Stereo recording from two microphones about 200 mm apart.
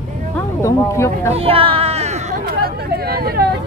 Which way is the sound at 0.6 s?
15° left (ahead or behind).